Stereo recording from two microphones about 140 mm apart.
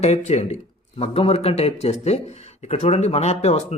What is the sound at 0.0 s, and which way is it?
Speech, 50° left (ahead or behind).